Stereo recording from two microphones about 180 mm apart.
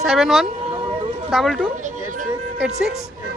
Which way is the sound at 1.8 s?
45° right (ahead or behind).